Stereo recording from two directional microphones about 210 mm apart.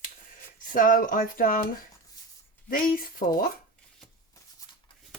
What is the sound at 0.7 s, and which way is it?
Speech, 40° left (ahead or behind).